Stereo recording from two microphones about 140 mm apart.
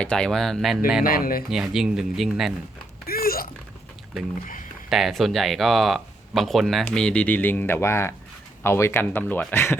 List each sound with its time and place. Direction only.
0.0 s speech: 5° left (ahead or behind)
1.0 s speech: 90° left
1.5 s speech: 5° right (ahead or behind)
3.1 s a sound: 90° left
4.9 s speech: centre (ahead or behind); by 9.7 s 15° left (ahead or behind)